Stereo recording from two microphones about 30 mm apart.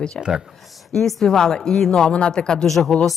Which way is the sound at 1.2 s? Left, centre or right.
Centre.